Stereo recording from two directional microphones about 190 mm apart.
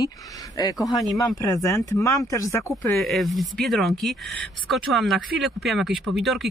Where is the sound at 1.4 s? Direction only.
15° left (ahead or behind).